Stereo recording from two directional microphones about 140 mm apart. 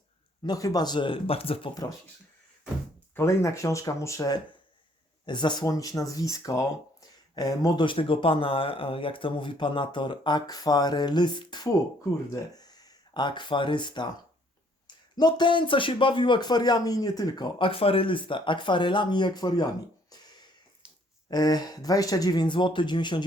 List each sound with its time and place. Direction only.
0.4 s speech: 25° left (ahead or behind); by 1.7 s 45° left (ahead or behind)
3.2 s speech: 20° left (ahead or behind)
5.2 s speech: 35° left (ahead or behind)
15.1 s speech: 30° left (ahead or behind)
20.8 s a sound: 5° right (ahead or behind)
21.2 s speech: 30° left (ahead or behind)